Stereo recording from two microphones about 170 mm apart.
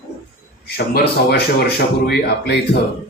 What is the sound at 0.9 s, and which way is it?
Speech, 65° left (ahead or behind).